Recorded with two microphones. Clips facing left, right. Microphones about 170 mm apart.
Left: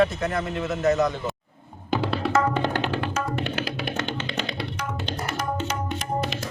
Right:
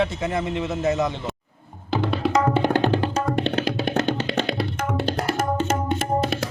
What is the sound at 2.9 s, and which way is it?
Music, 30° right (ahead or behind).